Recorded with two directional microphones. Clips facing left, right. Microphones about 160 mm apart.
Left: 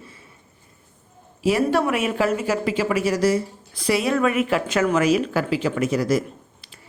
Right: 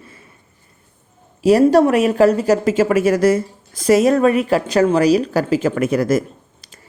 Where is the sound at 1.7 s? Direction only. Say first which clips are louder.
Right 8 dB; 40° right (ahead or behind).